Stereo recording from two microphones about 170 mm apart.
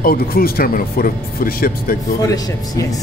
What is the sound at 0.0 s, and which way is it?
Speech, 60° left (ahead or behind).